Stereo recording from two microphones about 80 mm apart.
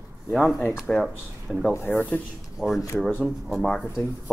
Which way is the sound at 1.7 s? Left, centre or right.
Left.